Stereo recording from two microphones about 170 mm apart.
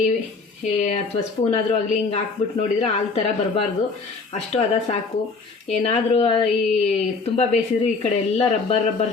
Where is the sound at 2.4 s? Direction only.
40° left (ahead or behind).